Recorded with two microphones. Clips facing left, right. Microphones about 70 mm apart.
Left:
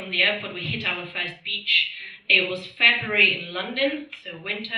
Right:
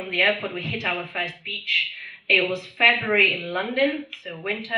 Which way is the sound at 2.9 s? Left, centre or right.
Centre.